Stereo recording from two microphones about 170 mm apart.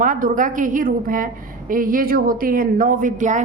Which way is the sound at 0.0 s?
50° right (ahead or behind).